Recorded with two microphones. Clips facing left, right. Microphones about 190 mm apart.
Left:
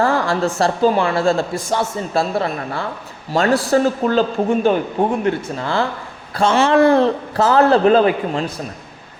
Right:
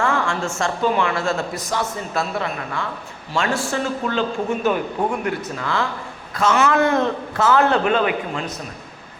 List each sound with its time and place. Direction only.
0.0 s a man's voice: 35° left (ahead or behind)